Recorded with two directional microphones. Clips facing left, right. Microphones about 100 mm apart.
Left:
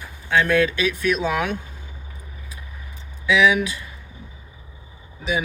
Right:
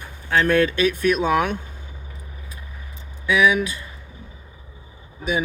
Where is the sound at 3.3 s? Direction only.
40° right (ahead or behind).